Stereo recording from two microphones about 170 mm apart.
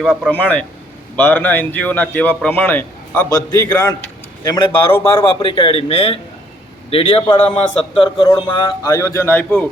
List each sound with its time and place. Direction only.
0.3 s a man's voice: 10° left (ahead or behind)
5.4 s a man's voice: 30° left (ahead or behind); by 9.6 s 10° left (ahead or behind)